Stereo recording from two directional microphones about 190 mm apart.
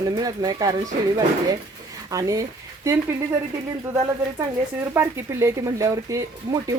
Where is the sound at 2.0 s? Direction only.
20° right (ahead or behind).